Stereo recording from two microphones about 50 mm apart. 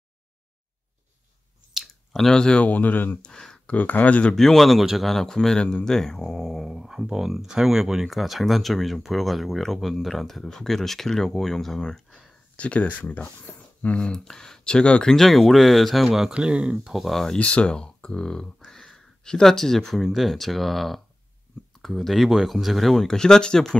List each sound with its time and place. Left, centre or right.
2.1 s speech: centre
2.6 s speech: left
3.2 s speech: centre
3.7 s speech: left
4.4 s speech: centre
6.6 s speech: centre
12.5 s speech: left
15.1 s speech: centre
16.1 s speech: centre
16.7 s speech: centre
17.4 s speech: left; by 23.1 s centre
23.1 s speech: centre